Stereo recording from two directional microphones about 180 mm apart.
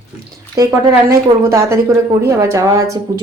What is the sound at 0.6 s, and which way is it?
Speech, 15° right (ahead or behind).